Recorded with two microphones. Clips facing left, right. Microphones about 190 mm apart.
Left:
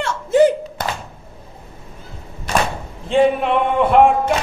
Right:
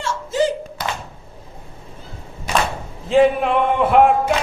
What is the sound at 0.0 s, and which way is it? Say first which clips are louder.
Thunk: left 6 dB; 60° left (ahead or behind).